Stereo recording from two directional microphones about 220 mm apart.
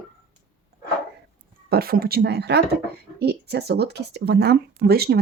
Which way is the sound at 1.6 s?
45° right (ahead or behind).